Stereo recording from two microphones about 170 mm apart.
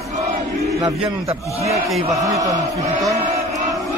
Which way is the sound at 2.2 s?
20° right (ahead or behind).